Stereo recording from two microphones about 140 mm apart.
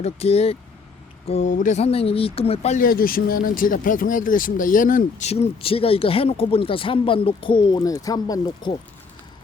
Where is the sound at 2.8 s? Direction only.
90° left; by 5.2 s 75° left (ahead or behind).